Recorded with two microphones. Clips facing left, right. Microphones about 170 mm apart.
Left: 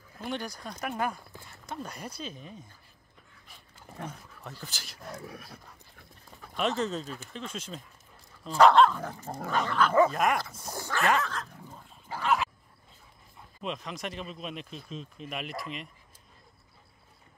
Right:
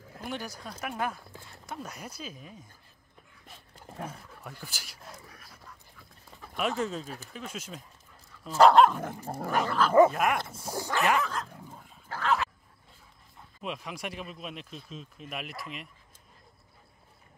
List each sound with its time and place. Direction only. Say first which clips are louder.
0.2 s speech: left 2 dB; 5° right (ahead or behind)
3.8 s speech: right 1 dB; 5° right (ahead or behind)
5.2 s dog: left 9 dB; 65° left (ahead or behind)
6.4 s speech: left 1 dB; 5° right (ahead or behind)
12.1 s dog: even; 10° left (ahead or behind)
13.6 s speech: left 1 dB; 5° right (ahead or behind)